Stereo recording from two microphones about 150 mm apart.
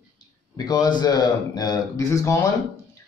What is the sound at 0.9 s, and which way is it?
A man's voice, 25° left (ahead or behind).